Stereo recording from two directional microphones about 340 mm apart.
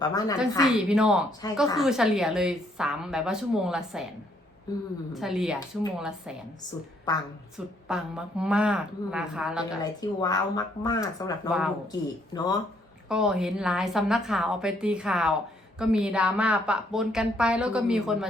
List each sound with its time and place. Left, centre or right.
0.0 s speech: centre
0.9 s a woman's voice: centre
4.7 s speech: centre
5.1 s a woman's voice: centre
7.1 s speech: centre
7.9 s a woman's voice: centre
9.8 s speech: centre
13.1 s a woman's voice: centre